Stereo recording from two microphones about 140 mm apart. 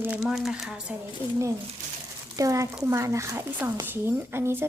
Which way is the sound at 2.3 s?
25° right (ahead or behind).